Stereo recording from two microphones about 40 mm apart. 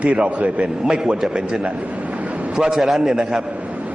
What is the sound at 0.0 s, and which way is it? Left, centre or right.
Speech, right.